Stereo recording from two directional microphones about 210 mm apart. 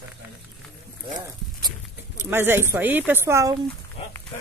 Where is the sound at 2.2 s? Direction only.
10° right (ahead or behind).